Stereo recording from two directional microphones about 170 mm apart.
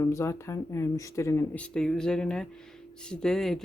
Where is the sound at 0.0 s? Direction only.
15° left (ahead or behind).